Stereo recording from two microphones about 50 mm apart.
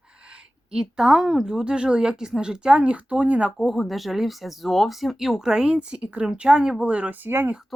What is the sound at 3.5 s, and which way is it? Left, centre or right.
Speech, centre.